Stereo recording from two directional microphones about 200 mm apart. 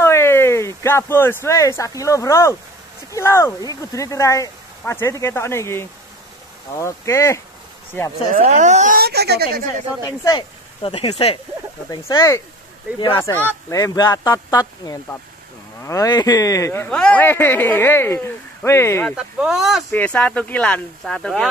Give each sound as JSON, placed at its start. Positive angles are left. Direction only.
{"t": 0.0, "sound": "speech", "side_deg": 15}
{"t": 8.4, "sound": "speech", "side_deg": -35}
{"t": 10.0, "sound": "speech", "side_deg": 20}
{"t": 11.9, "sound": "speech", "side_deg": 20}
{"t": 19.1, "sound": "speech", "side_deg": 0}